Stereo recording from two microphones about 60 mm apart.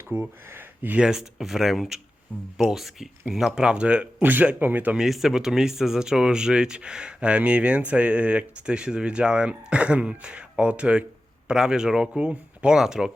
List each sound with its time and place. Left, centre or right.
0.1 s speech: right
0.9 s speech: centre
4.2 s speech: right
4.9 s speech: centre